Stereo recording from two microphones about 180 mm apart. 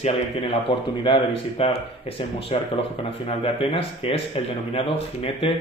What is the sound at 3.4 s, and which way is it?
Speech, 30° left (ahead or behind).